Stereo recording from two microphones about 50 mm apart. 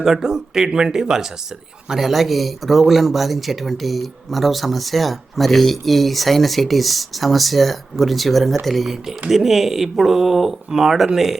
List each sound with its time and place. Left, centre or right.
0.0 s speech: centre